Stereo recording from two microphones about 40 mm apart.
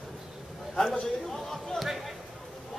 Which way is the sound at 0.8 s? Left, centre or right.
Centre.